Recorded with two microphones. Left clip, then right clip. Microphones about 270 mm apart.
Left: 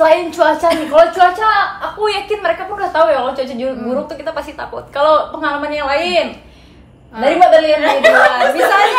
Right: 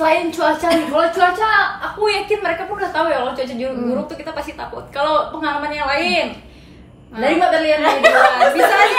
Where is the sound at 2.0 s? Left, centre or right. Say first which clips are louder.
Left 2 dB; centre.